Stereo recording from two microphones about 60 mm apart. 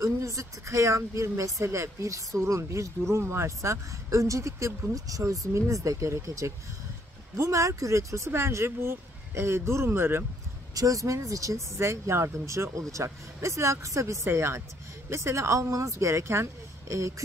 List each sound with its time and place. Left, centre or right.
0.0 s speech: right
4.9 s speech: right
10.7 s speech: right